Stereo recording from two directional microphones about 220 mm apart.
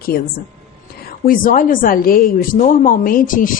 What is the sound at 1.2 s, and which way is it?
A woman's voice, 40° left (ahead or behind).